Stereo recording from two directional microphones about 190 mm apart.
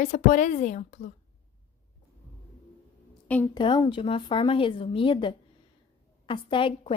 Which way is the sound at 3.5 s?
25° left (ahead or behind).